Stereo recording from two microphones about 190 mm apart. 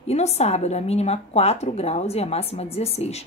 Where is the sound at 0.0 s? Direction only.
35° left (ahead or behind).